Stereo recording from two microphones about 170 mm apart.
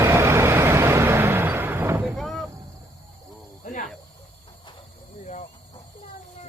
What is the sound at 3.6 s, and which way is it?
Cricket, 45° left (ahead or behind).